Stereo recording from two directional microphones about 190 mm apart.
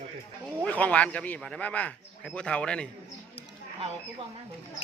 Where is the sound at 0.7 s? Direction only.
5° left (ahead or behind).